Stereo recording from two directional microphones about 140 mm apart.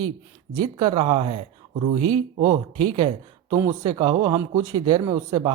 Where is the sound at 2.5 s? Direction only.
35° right (ahead or behind).